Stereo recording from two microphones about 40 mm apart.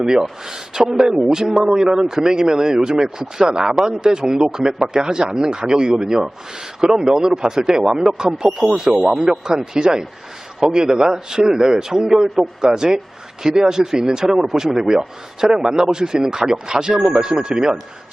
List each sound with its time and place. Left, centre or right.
0.1 s speech: centre
3.8 s speech: right